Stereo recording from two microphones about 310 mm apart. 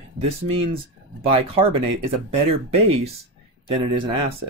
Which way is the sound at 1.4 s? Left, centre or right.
Centre.